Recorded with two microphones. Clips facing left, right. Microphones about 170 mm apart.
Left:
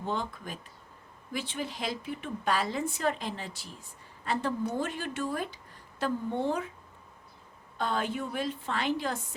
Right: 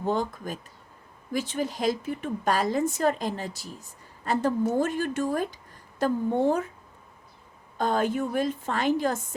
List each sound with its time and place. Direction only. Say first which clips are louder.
0.0 s a woman's voice: right 6 dB; 45° right (ahead or behind)
7.8 s a woman's voice: right 6 dB; 45° right (ahead or behind)